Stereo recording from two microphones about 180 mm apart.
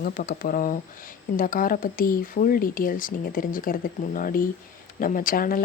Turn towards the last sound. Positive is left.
turn(degrees=50)  # may be behind; listen again after turning